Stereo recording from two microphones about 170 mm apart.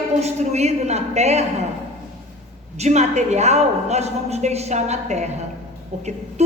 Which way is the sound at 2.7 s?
40° right (ahead or behind).